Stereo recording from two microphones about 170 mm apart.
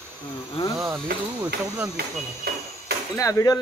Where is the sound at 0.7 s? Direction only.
15° right (ahead or behind).